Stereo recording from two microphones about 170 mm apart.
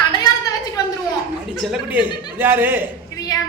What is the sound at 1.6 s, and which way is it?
A man's voice, 10° right (ahead or behind).